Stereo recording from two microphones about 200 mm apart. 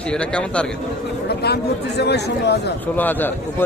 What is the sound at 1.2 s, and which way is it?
Speech, 55° left (ahead or behind).